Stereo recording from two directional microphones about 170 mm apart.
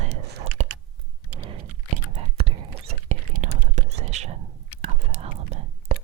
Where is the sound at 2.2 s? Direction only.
35° right (ahead or behind).